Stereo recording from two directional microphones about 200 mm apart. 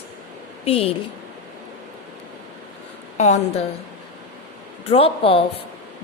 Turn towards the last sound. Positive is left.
turn(degrees=30)  # may be behind; listen again after turning